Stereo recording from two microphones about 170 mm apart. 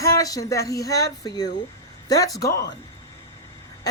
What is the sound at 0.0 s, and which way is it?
Speech, 20° left (ahead or behind).